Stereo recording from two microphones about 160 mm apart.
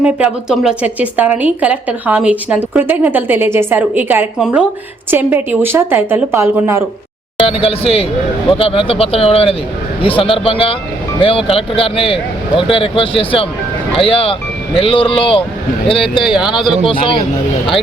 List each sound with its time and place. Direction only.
0.0 s a woman's voice: 5° right (ahead or behind)
7.4 s a man's voice: 35° left (ahead or behind)
16.2 s speech: 5° right (ahead or behind)
16.8 s a man's voice: 30° left (ahead or behind)